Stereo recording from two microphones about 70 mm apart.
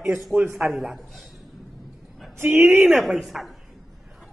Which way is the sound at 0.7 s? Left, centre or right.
Centre.